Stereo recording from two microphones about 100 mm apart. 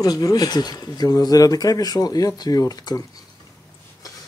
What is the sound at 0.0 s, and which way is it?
Speech, 40° left (ahead or behind).